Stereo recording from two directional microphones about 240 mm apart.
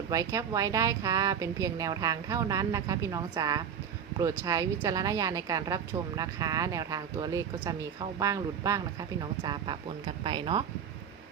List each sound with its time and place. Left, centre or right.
0.1 s speech: centre